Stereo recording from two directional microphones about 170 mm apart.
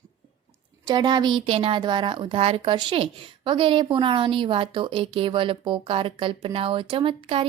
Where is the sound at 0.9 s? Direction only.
25° right (ahead or behind).